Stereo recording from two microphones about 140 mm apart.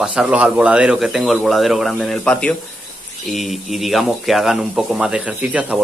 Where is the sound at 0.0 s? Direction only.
5° right (ahead or behind).